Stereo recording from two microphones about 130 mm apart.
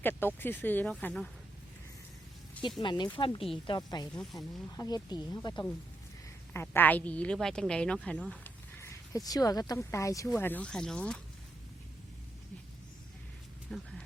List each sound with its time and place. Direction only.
0.0 s a woman's voice: 15° left (ahead or behind)
2.8 s speech: 35° left (ahead or behind)
4.1 s speech: 5° left (ahead or behind)
4.8 s speech: 30° left (ahead or behind)
6.5 s a woman's voice: 15° left (ahead or behind)
8.8 s speech: 25° left (ahead or behind); by 11.2 s 5° left (ahead or behind)
13.7 s speech: 5° left (ahead or behind)